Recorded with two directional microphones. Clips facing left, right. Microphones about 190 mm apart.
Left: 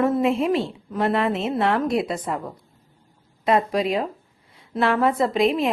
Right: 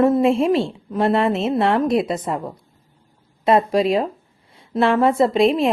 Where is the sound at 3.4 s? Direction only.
30° right (ahead or behind).